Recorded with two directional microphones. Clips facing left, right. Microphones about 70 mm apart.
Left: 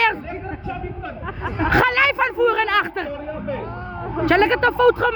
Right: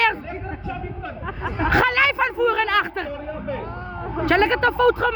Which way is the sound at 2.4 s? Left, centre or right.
Left.